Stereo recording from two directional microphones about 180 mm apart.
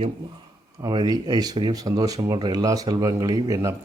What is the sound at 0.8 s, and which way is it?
Speech, 20° right (ahead or behind).